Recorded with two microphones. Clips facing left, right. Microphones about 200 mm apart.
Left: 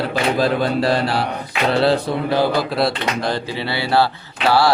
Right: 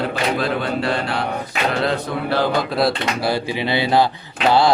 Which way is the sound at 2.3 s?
10° left (ahead or behind).